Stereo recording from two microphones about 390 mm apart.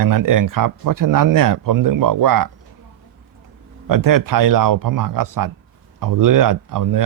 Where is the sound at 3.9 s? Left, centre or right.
Right.